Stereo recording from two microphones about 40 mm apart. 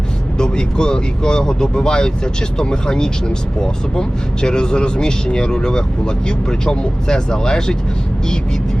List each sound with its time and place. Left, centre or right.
0.3 s speech: centre